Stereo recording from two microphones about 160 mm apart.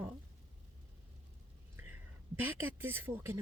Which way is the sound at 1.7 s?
15° right (ahead or behind).